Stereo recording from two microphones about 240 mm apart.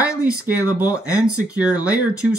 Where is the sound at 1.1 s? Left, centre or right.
Centre.